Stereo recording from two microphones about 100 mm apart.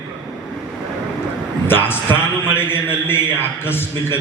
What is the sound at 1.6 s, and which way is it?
A man's voice, 20° left (ahead or behind).